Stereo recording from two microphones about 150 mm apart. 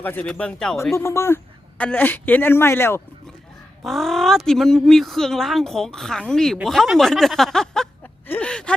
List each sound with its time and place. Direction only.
0.0 s speech: 10° left (ahead or behind)
0.9 s speech: 20° left (ahead or behind)
3.8 s speech: centre (ahead or behind)